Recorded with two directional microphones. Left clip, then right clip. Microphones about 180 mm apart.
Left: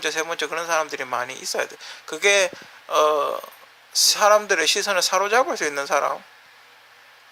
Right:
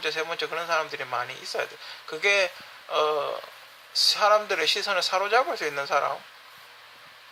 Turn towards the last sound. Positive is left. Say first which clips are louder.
# left 4 dB
turn(degrees=40)  # may be behind; listen again after turning